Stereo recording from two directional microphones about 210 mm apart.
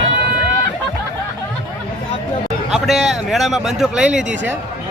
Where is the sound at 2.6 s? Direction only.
Centre (ahead or behind).